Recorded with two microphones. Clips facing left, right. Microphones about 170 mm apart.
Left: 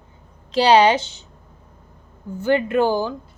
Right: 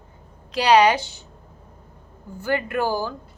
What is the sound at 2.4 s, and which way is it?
Speech, 20° left (ahead or behind).